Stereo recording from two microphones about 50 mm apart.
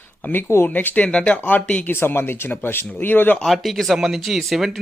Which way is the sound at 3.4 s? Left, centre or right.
Centre.